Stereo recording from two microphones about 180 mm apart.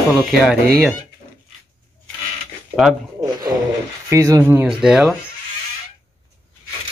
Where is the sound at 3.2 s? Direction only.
20° right (ahead or behind).